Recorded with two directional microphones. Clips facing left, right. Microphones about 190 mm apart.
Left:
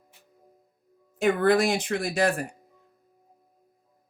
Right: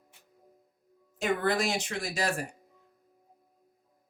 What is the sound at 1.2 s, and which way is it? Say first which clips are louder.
Speech: left 7 dB; 55° left (ahead or behind).